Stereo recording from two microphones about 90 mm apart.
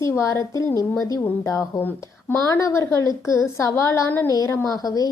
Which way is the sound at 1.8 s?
20° left (ahead or behind).